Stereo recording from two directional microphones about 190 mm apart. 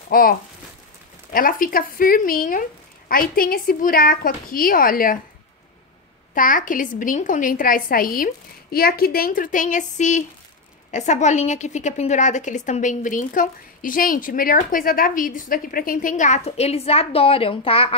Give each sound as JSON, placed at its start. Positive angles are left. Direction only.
{"t": 0.1, "sound": "a woman's voice", "side_deg": 50}
{"t": 6.3, "sound": "a woman's voice", "side_deg": 45}